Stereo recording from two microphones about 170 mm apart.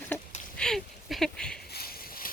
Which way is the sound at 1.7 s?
60° left (ahead or behind).